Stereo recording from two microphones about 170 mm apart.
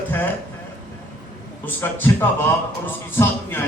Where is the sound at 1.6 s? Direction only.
10° left (ahead or behind).